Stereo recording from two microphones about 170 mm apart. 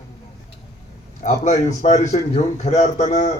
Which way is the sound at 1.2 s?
45° left (ahead or behind).